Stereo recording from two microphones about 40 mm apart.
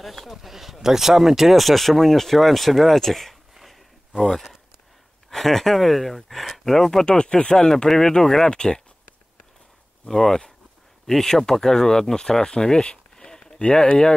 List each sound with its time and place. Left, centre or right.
0.0 s speech: centre
3.5 s a sound: centre
5.3 s speech: centre
7.1 s speech: left
10.0 s speech: centre
13.6 s speech: left